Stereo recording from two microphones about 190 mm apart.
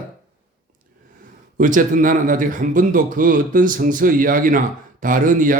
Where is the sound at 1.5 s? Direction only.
45° right (ahead or behind).